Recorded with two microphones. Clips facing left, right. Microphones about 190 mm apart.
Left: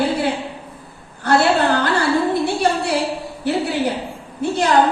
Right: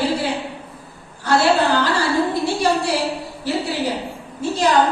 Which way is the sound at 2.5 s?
60° left (ahead or behind).